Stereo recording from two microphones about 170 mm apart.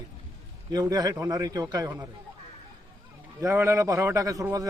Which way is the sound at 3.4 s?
15° right (ahead or behind).